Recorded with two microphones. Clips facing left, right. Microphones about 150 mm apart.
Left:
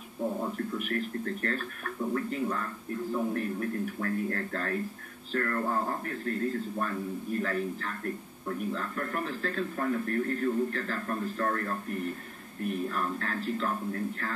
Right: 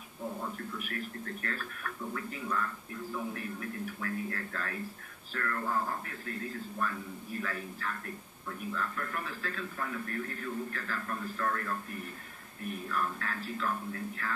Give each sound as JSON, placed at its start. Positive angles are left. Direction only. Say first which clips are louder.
{"t": 0.6, "sound": "a man's voice", "louder": "left 7 dB", "side_deg": 40}